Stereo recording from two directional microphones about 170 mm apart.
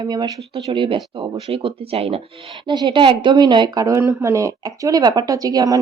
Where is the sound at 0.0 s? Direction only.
25° right (ahead or behind).